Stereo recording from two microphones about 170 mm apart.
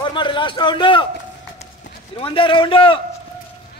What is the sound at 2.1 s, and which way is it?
Speech, 30° left (ahead or behind).